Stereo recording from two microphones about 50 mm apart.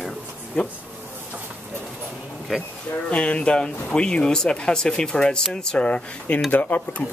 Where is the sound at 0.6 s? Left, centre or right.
Centre.